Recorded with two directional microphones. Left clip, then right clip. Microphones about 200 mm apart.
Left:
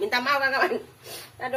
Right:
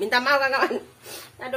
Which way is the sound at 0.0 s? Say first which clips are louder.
Right 3 dB; 60° right (ahead or behind).